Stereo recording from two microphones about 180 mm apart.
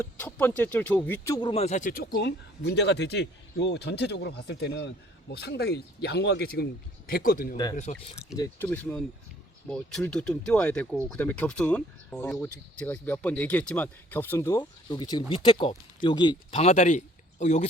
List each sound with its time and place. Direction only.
0.0 s speech: 10° left (ahead or behind); by 6.7 s 65° left (ahead or behind)
7.1 s speech: 50° left (ahead or behind)
7.5 s speech: 20° left (ahead or behind)
8.3 s speech: 5° right (ahead or behind); by 16.6 s 25° left (ahead or behind)
16.6 s speech: 40° left (ahead or behind)